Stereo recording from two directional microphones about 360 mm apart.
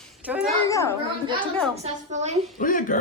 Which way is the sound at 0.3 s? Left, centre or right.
Centre.